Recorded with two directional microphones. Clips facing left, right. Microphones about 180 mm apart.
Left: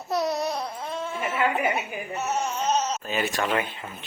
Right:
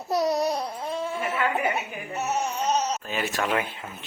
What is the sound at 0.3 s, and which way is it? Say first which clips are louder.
Babbling: right 3 dB; 35° right (ahead or behind).